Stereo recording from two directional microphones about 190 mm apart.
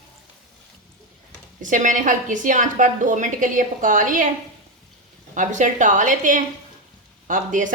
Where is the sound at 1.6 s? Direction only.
45° right (ahead or behind).